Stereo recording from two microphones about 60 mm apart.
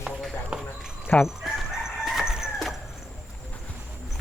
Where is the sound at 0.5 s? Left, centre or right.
Centre.